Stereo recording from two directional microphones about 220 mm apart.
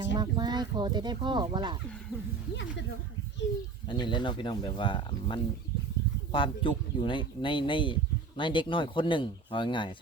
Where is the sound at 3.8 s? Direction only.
20° left (ahead or behind).